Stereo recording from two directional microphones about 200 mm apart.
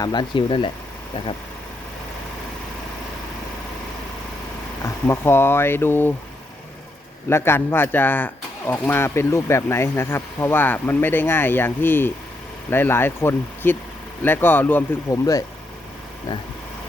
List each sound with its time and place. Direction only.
0.0 s speech: 25° left (ahead or behind)
5.0 s speech: 10° left (ahead or behind)
7.3 s speech: 10° left (ahead or behind)